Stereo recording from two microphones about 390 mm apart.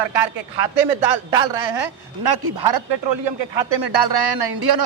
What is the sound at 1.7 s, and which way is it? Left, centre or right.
Speech, right.